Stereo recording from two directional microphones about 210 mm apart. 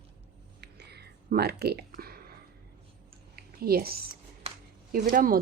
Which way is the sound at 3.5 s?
45° right (ahead or behind).